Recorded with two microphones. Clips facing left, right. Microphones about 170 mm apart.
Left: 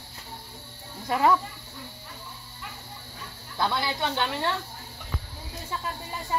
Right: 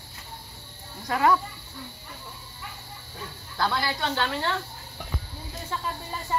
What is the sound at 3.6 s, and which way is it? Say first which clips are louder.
Speech: even; 20° left (ahead or behind).